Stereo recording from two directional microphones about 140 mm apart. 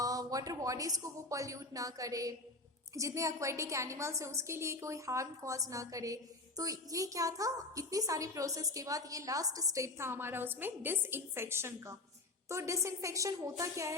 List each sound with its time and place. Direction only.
0.0 s a woman's voice: 25° right (ahead or behind)